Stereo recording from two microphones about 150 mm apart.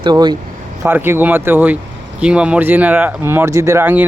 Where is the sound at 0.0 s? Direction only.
30° right (ahead or behind).